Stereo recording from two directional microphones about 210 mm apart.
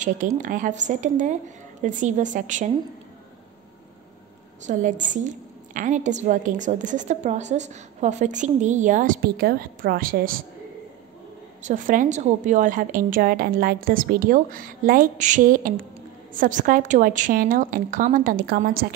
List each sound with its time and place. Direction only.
0.4 s a woman's voice: 40° right (ahead or behind)
4.6 s a woman's voice: 35° right (ahead or behind)
11.6 s a woman's voice: 40° right (ahead or behind)